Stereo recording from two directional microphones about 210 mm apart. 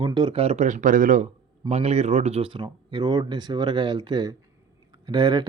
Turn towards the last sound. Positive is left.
turn(degrees=-20)  # may be behind; listen again after turning